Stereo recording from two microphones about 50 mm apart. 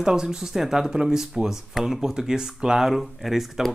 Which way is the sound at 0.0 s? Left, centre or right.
Centre.